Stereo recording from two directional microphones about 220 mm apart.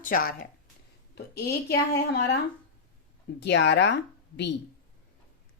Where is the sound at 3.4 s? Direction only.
50° left (ahead or behind).